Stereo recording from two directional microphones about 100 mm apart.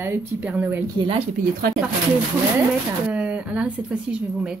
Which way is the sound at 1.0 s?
55° right (ahead or behind).